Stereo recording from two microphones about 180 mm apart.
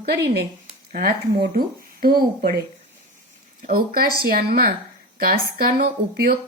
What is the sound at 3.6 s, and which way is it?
Speech, 55° right (ahead or behind).